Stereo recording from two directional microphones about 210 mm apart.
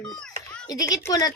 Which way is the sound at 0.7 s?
15° left (ahead or behind).